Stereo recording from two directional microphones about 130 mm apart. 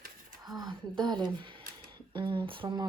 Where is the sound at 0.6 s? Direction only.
35° right (ahead or behind).